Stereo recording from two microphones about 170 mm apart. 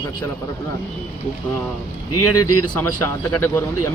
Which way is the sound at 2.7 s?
10° left (ahead or behind).